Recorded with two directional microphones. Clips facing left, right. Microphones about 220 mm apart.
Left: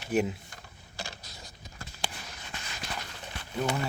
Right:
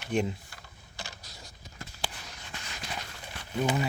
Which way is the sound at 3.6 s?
5° right (ahead or behind).